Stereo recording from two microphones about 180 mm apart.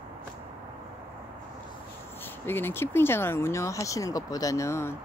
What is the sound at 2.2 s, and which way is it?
Speech, 10° left (ahead or behind).